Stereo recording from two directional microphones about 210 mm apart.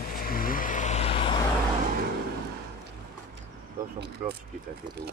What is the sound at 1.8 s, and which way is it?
Vehicle, 45° right (ahead or behind).